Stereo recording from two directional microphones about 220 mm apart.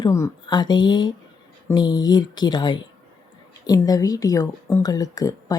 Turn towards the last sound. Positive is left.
turn(degrees=15)  # may be behind; listen again after turning